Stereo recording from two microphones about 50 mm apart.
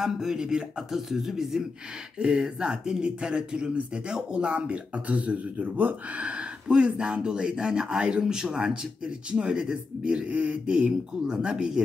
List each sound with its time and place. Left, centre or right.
0.0 s speech: centre